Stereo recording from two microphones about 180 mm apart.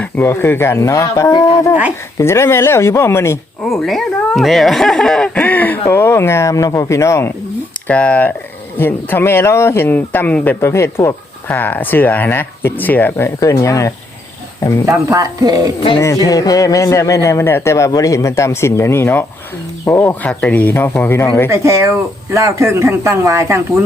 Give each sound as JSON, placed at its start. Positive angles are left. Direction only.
{"t": 0.0, "sound": "speech", "side_deg": 10}
{"t": 3.7, "sound": "speech", "side_deg": 0}
{"t": 14.8, "sound": "speech", "side_deg": -20}
{"t": 16.0, "sound": "speech", "side_deg": 15}
{"t": 21.5, "sound": "speech", "side_deg": -15}